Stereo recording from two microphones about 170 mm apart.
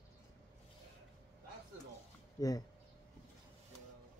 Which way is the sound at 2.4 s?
20° left (ahead or behind).